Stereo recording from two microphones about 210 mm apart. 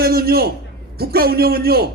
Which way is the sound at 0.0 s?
45° right (ahead or behind).